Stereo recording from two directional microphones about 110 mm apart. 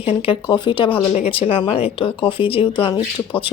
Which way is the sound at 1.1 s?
65° left (ahead or behind).